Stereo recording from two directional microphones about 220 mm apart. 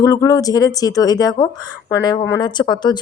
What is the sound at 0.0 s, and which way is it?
A woman's voice, 15° left (ahead or behind).